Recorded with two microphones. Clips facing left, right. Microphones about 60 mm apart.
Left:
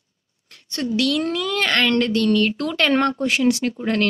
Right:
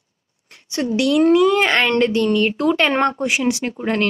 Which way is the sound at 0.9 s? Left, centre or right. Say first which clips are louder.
Right 7 dB; right.